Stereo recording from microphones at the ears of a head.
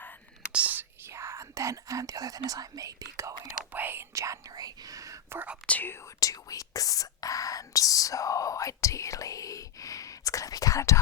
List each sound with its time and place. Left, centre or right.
0.5 s speech: right
6.1 s speech: left